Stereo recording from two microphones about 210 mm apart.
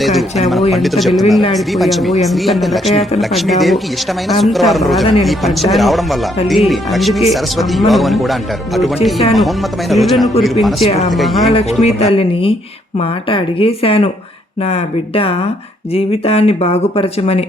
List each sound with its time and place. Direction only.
0.0 s a sound: centre (ahead or behind)
0.7 s speech: centre (ahead or behind)
10.8 s speech: 30° left (ahead or behind)
11.1 s speech: centre (ahead or behind)
11.8 s speech: 30° left (ahead or behind)